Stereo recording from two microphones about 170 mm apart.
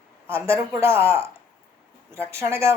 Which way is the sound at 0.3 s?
15° right (ahead or behind).